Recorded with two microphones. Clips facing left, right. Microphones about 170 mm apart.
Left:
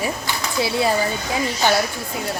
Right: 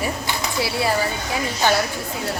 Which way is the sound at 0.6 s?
20° left (ahead or behind).